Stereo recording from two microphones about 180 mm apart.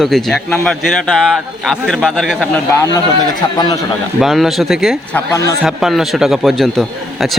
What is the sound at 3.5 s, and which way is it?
Speech, 20° left (ahead or behind).